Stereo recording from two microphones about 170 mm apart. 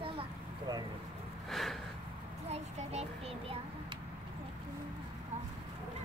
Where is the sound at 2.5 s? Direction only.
40° right (ahead or behind).